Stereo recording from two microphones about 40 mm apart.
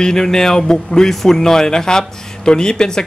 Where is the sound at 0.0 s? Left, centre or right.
Centre.